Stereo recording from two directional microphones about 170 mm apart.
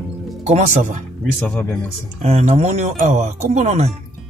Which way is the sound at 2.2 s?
40° right (ahead or behind).